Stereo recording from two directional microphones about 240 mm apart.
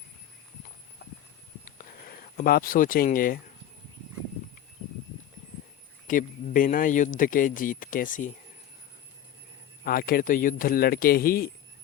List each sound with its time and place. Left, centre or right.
1.6 s a sound: left
6.1 s speech: left
9.8 s speech: left